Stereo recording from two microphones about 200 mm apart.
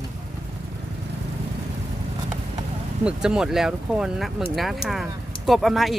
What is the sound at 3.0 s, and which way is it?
Speech, 5° right (ahead or behind).